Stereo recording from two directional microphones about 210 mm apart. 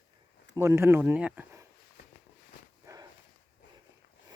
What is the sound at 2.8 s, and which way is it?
Walk, 15° right (ahead or behind).